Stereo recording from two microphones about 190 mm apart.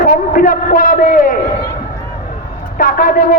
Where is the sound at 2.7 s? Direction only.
45° left (ahead or behind).